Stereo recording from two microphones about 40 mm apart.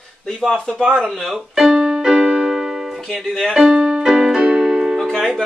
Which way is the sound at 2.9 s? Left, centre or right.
Centre.